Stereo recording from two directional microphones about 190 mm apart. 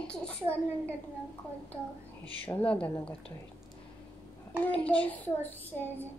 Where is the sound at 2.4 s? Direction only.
10° left (ahead or behind).